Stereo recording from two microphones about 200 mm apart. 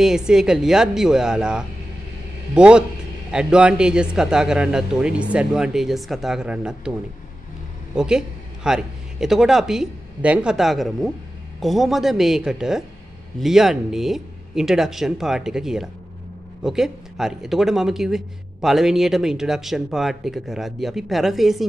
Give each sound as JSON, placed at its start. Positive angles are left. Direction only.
{"t": 0.0, "sound": "speech", "side_deg": -5}
{"t": 7.9, "sound": "speech", "side_deg": -5}